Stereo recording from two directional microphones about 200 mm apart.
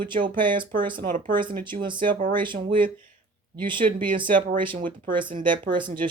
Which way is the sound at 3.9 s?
25° right (ahead or behind).